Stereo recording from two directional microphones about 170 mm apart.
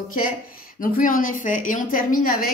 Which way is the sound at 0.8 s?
55° left (ahead or behind).